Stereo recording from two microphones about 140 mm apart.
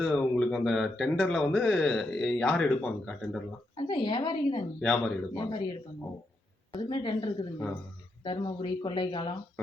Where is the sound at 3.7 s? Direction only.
35° left (ahead or behind).